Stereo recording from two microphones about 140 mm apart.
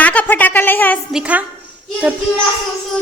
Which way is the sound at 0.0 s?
10° left (ahead or behind).